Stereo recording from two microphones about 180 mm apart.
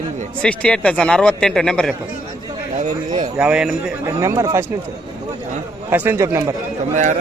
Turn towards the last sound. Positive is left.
turn(degrees=-40)  # may be behind; listen again after turning